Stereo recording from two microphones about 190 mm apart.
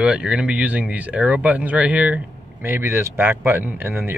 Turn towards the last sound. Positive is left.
turn(degrees=-10)  # may be behind; listen again after turning